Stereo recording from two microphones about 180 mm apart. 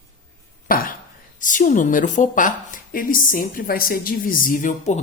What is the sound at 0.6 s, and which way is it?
Speech, 50° left (ahead or behind).